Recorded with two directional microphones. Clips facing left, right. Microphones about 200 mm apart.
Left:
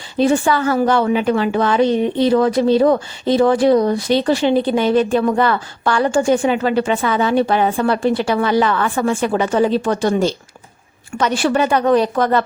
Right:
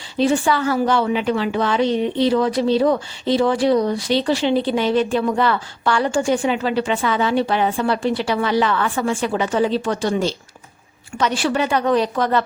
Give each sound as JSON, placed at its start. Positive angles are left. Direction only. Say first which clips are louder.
{"t": 0.2, "sound": "a woman's voice", "louder": "left 3 dB", "side_deg": 50}